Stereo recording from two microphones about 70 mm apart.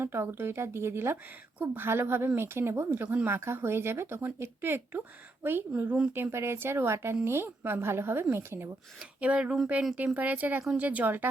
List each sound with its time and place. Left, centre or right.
0.0 s a woman's voice: right
9.2 s speech: centre